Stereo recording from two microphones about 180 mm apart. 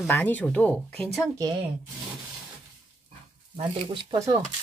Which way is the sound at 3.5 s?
30° right (ahead or behind).